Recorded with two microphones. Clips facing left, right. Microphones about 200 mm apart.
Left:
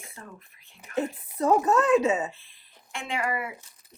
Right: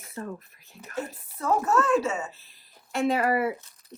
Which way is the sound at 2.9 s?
40° right (ahead or behind).